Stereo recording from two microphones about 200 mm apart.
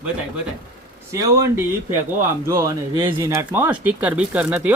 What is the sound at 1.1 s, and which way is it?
Speech, 15° right (ahead or behind).